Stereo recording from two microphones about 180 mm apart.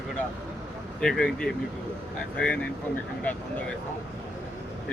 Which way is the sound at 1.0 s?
5° left (ahead or behind).